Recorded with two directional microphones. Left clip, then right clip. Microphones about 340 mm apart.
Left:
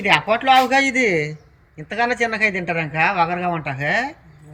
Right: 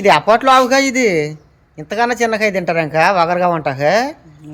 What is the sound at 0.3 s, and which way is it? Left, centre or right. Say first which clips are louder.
A man's voice: right 5 dB; centre.